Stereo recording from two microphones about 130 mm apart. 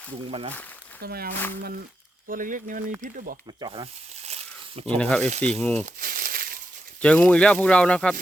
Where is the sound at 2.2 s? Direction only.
90° right.